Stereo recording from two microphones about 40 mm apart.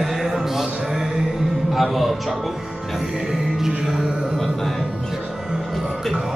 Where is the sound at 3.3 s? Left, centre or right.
Centre.